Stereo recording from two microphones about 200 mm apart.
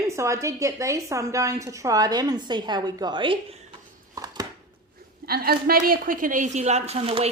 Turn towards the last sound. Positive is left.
turn(degrees=-30)  # may be behind; listen again after turning